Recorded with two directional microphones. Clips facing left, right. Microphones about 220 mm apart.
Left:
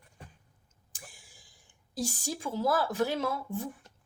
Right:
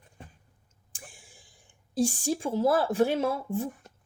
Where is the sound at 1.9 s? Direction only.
30° right (ahead or behind).